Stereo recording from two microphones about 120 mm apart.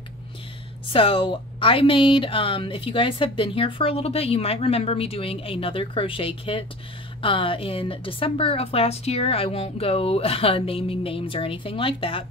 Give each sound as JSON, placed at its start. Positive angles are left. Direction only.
{"t": 0.8, "sound": "speech", "side_deg": 50}